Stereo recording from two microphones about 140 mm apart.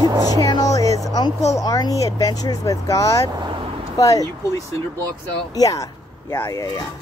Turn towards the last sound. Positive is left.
turn(degrees=25)  # may be behind; listen again after turning